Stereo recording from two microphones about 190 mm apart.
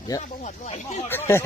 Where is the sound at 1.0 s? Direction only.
10° left (ahead or behind).